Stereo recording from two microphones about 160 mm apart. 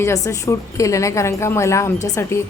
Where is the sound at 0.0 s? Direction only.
20° left (ahead or behind).